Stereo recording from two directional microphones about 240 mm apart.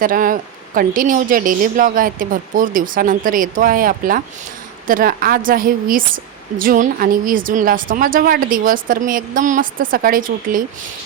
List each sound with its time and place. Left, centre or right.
0.0 s a woman's voice: right